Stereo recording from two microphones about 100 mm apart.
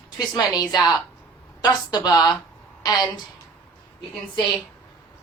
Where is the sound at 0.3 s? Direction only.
40° left (ahead or behind).